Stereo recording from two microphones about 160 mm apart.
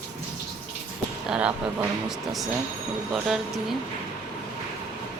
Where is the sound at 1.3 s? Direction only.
5° right (ahead or behind).